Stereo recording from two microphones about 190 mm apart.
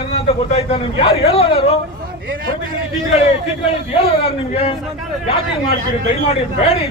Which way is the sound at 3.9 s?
30° left (ahead or behind).